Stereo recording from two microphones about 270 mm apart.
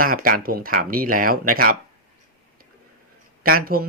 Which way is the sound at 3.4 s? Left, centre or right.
Right.